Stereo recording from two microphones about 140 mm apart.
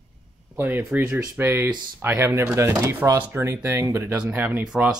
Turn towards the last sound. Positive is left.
turn(degrees=-5)  # may be behind; listen again after turning